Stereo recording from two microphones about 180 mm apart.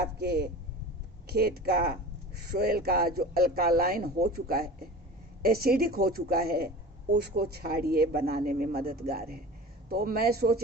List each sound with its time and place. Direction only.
0.2 s speech: 65° right (ahead or behind)